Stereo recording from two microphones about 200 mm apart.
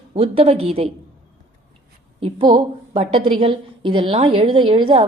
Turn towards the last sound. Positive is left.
turn(degrees=-25)  # may be behind; listen again after turning